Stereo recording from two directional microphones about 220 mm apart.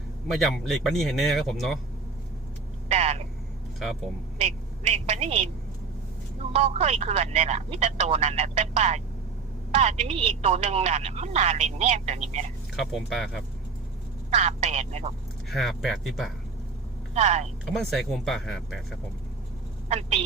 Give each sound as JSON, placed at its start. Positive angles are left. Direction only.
{"t": 0.3, "sound": "speech", "side_deg": 0}
{"t": 2.9, "sound": "speech", "side_deg": -30}
{"t": 4.4, "sound": "speech", "side_deg": -30}
{"t": 6.5, "sound": "speech", "side_deg": -30}
{"t": 12.7, "sound": "speech", "side_deg": 0}
{"t": 14.3, "sound": "speech", "side_deg": -30}
{"t": 15.4, "sound": "speech", "side_deg": 0}
{"t": 17.2, "sound": "speech", "side_deg": -30}
{"t": 17.7, "sound": "speech", "side_deg": 0}
{"t": 19.9, "sound": "speech", "side_deg": -30}